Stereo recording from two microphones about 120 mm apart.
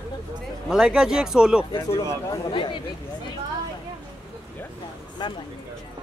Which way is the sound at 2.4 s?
45° left (ahead or behind).